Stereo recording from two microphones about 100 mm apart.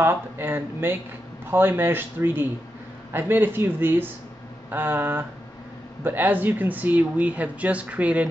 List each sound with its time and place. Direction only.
0.0 s a man's voice: 20° right (ahead or behind)